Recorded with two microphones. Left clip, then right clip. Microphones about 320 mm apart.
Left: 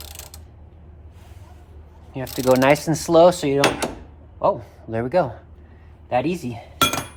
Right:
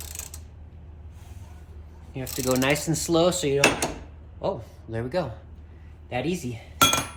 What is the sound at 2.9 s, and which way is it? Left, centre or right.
A man's voice, left.